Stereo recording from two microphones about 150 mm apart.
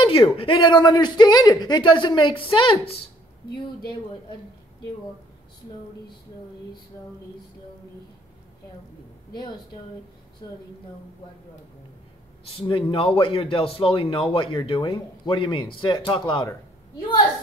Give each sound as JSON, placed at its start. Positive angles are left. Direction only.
{"t": 0.0, "sound": "a man's voice", "side_deg": 35}
{"t": 12.5, "sound": "a man's voice", "side_deg": 35}